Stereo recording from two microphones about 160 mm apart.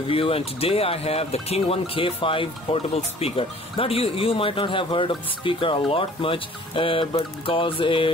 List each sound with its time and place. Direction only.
0.1 s speech: 35° left (ahead or behind)